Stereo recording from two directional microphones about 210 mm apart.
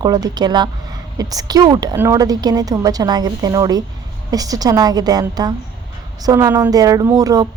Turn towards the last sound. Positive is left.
turn(degrees=-15)  # may be behind; listen again after turning